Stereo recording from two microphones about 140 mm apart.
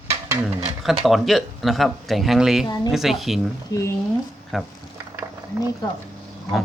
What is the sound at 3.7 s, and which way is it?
Speech, 25° left (ahead or behind).